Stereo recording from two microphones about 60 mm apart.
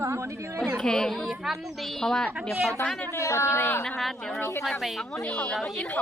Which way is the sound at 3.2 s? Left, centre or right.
Left.